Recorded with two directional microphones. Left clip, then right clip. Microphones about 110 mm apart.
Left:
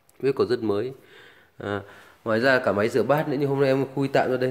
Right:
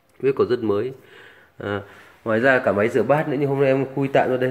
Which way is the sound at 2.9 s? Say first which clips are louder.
Right 3 dB; 25° left (ahead or behind).